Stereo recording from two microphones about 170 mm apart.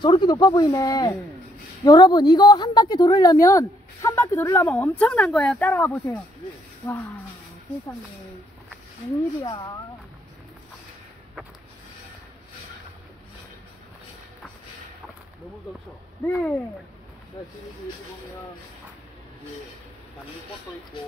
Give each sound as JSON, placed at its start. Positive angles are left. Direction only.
{"t": 0.0, "sound": "a woman's voice", "side_deg": 25}
{"t": 9.4, "sound": "speech", "side_deg": 25}
{"t": 16.3, "sound": "a woman's voice", "side_deg": 10}